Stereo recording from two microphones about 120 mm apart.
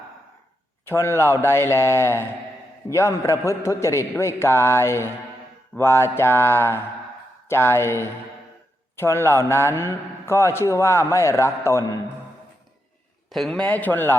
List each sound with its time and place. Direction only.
0.9 s a man's voice: 20° left (ahead or behind)
13.3 s speech: centre (ahead or behind)
13.7 s a man's voice: 15° left (ahead or behind)